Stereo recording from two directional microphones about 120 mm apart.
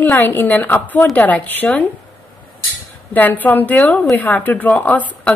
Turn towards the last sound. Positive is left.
turn(degrees=15)  # may be behind; listen again after turning